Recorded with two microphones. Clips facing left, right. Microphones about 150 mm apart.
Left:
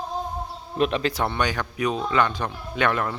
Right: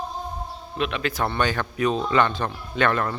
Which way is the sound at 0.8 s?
35° left (ahead or behind).